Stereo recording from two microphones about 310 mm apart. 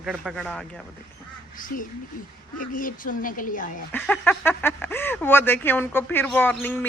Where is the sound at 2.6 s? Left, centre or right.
Left.